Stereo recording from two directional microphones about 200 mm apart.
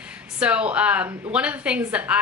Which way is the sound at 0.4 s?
5° right (ahead or behind).